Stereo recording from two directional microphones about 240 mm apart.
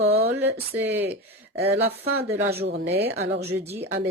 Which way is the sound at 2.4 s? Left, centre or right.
Right.